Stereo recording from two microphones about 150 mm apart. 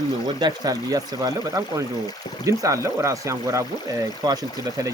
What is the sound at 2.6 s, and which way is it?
Speech, 20° right (ahead or behind).